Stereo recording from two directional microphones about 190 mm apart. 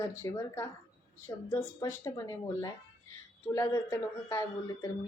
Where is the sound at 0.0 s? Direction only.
15° left (ahead or behind).